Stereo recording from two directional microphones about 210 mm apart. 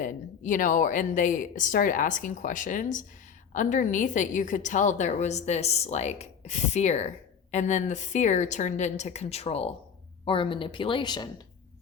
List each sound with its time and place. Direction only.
0.0 s a woman's voice: 40° left (ahead or behind); by 11.3 s 20° left (ahead or behind)